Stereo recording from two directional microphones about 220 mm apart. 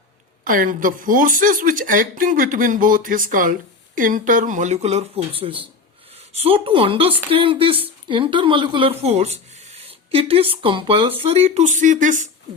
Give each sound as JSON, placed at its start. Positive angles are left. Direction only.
{"t": 0.4, "sound": "speech", "side_deg": -40}